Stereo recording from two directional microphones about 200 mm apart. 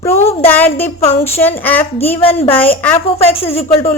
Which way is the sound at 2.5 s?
10° left (ahead or behind).